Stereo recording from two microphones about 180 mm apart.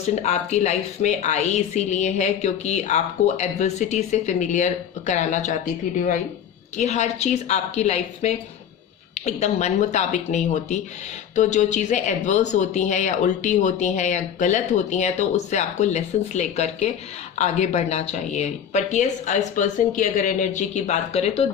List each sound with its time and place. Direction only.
0.2 s a woman's voice: 40° left (ahead or behind)